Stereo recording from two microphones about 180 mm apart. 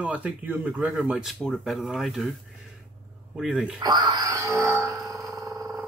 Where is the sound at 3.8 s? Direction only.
25° right (ahead or behind).